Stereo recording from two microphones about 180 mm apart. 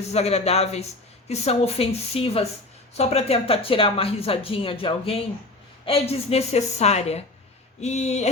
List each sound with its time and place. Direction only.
0.1 s speech: 35° left (ahead or behind)